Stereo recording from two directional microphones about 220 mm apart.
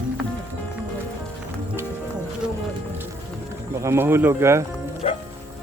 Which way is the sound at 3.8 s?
10° right (ahead or behind).